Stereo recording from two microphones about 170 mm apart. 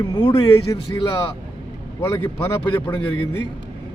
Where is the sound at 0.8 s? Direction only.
30° left (ahead or behind).